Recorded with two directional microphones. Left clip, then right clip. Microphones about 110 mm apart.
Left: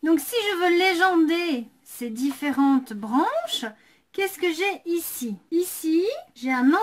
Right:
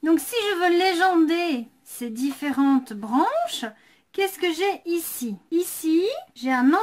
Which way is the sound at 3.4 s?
25° right (ahead or behind).